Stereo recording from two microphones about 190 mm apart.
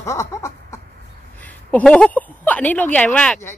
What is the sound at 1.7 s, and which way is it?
Speech, 5° left (ahead or behind).